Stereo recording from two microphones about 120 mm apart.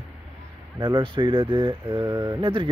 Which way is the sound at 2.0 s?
25° right (ahead or behind).